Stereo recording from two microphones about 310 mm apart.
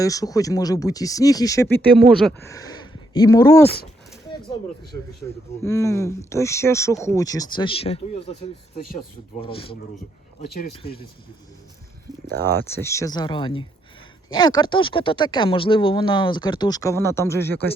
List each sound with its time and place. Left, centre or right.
0.0 s speech: centre
2.0 s speech: centre
2.5 s speech: centre
5.6 s speech: centre
9.4 s speech: centre
12.4 s speech: centre